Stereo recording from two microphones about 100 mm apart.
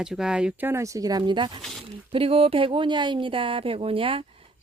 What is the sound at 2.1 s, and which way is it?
Speech, 65° right (ahead or behind).